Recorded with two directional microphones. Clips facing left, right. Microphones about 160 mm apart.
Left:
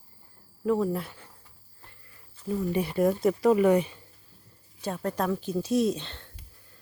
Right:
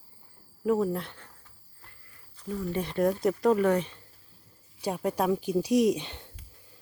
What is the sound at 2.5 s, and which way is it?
Speech, 20° left (ahead or behind).